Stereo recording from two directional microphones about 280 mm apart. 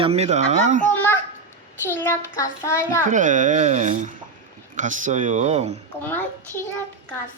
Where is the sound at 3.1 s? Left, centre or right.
Right.